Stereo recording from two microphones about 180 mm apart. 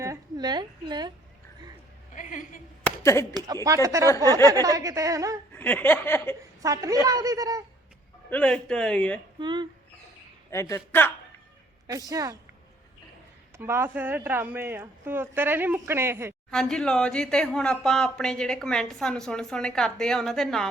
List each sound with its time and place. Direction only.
0.0 s a sound: 20° right (ahead or behind)
2.1 s a woman's voice: 45° left (ahead or behind)
2.8 s a sound: 15° left (ahead or behind)
3.3 s a woman's voice: 20° right (ahead or behind)
4.1 s speech: 15° left (ahead or behind)
4.5 s a woman's voice: 20° right (ahead or behind)
5.5 s speech: 10° left (ahead or behind)
6.6 s a woman's voice: 20° right (ahead or behind)
8.3 s speech: 5° left (ahead or behind)
9.4 s a woman's voice: 25° right (ahead or behind)
10.5 s speech: 15° left (ahead or behind)
11.9 s a woman's voice: 20° right (ahead or behind)
13.6 s speech: 15° right (ahead or behind)
16.5 s speech: 5° left (ahead or behind)